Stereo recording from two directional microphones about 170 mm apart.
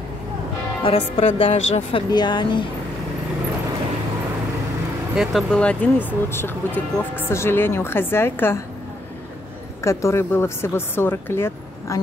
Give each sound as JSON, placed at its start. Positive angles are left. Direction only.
{"t": 0.8, "sound": "a woman's voice", "side_deg": 35}
{"t": 5.1, "sound": "speech", "side_deg": -5}
{"t": 5.5, "sound": "speech", "side_deg": 5}
{"t": 9.8, "sound": "speech", "side_deg": 15}